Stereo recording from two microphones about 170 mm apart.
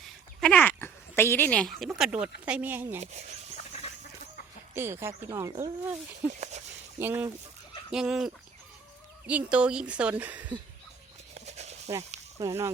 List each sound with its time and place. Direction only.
0.3 s speech: 5° left (ahead or behind)
1.8 s speech: 5° right (ahead or behind)
3.0 s speech: 40° right (ahead or behind)
3.7 s chicken: 40° left (ahead or behind)
4.7 s speech: 15° right (ahead or behind)
7.0 s speech: 15° right (ahead or behind)
11.3 s horse: 40° right (ahead or behind)
12.4 s speech: 20° right (ahead or behind)